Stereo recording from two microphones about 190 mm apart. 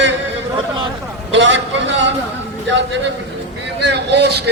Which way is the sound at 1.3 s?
70° right (ahead or behind).